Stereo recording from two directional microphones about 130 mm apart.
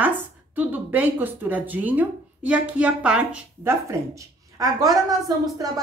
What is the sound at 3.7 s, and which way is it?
Speech, 25° right (ahead or behind).